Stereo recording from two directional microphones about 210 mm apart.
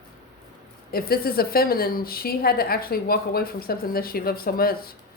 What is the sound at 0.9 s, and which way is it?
A woman's voice, 45° left (ahead or behind).